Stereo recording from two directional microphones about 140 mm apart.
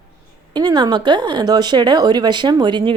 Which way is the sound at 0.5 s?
30° right (ahead or behind).